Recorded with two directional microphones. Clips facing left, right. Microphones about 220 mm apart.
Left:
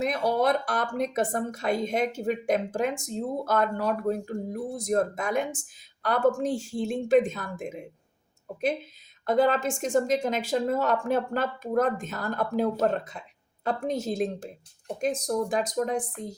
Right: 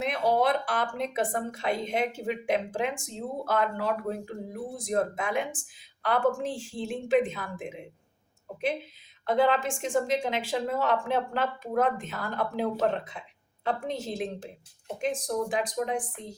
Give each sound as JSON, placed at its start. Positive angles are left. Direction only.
{"t": 0.0, "sound": "speech", "side_deg": 40}
{"t": 9.2, "sound": "speech", "side_deg": 45}